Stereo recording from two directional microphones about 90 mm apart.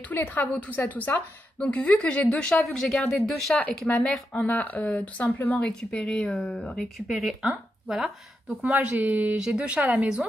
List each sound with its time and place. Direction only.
0.1 s a woman's voice: 20° left (ahead or behind)
5.7 s a woman's voice: 10° left (ahead or behind)
7.1 s speech: 5° right (ahead or behind)
8.6 s speech: 15° right (ahead or behind)